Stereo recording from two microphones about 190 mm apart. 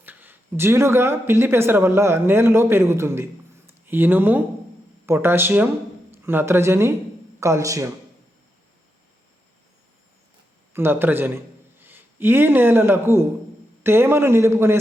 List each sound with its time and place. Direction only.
0.0 s speech: 10° right (ahead or behind)
10.8 s a man's voice: 10° right (ahead or behind)